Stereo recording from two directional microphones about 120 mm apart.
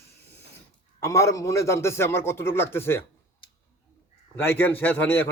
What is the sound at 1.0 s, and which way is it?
A man's voice, 25° left (ahead or behind).